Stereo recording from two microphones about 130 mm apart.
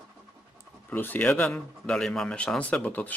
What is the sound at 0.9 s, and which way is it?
Speech, 15° left (ahead or behind).